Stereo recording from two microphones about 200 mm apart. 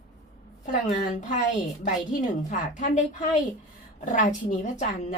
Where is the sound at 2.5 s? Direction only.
40° left (ahead or behind).